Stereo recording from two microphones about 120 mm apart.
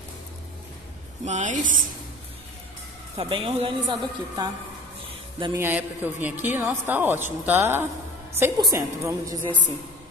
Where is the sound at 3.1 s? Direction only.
50° right (ahead or behind).